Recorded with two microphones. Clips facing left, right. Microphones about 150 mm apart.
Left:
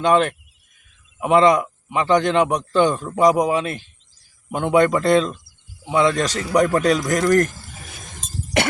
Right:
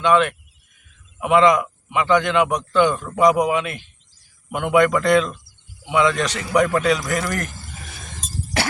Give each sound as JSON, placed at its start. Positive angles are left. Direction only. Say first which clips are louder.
{"t": 0.0, "sound": "a man's voice", "louder": "even", "side_deg": 40}